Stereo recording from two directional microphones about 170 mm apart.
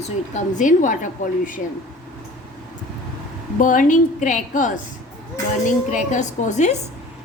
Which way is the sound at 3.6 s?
50° left (ahead or behind).